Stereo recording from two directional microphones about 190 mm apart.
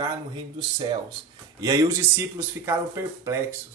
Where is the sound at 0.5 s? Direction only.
25° right (ahead or behind).